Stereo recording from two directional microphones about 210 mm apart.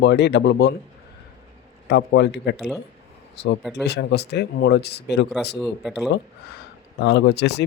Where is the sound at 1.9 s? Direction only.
55° left (ahead or behind).